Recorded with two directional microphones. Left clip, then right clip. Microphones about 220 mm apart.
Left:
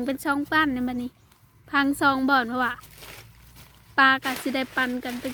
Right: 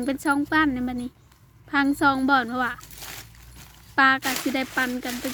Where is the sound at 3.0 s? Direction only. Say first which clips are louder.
Right 4 dB; 45° right (ahead or behind).